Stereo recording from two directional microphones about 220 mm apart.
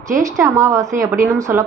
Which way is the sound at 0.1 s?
15° right (ahead or behind).